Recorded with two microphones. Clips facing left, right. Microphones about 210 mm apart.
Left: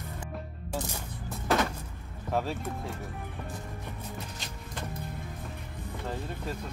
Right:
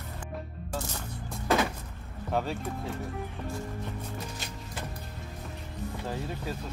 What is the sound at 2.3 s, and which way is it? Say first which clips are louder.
Music: even; centre (ahead or behind).